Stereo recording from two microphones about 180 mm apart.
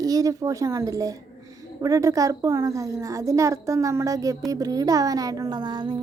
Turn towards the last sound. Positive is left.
turn(degrees=-25)  # may be behind; listen again after turning